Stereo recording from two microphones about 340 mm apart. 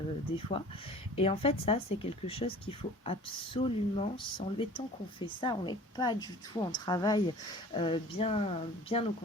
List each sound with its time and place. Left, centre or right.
0.3 s speech: centre